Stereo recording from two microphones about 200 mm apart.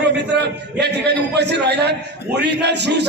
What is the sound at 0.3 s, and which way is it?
A man's voice, 60° right (ahead or behind).